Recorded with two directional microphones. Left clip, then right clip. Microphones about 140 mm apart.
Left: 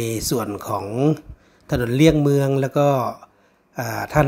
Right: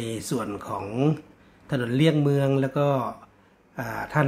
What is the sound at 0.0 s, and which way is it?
Speech, 50° left (ahead or behind).